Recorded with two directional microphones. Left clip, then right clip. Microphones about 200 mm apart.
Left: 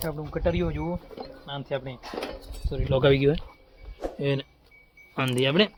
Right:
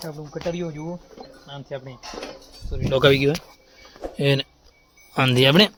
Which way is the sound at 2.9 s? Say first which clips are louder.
Right 4 dB; 15° right (ahead or behind).